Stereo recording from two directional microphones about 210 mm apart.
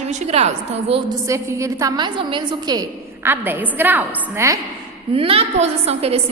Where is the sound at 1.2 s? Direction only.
15° right (ahead or behind).